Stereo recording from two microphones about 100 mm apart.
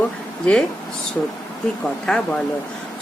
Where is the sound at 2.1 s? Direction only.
10° left (ahead or behind).